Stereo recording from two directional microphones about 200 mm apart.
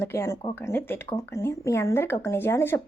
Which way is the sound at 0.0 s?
15° left (ahead or behind).